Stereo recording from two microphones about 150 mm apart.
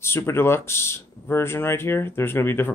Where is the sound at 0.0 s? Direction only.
15° left (ahead or behind).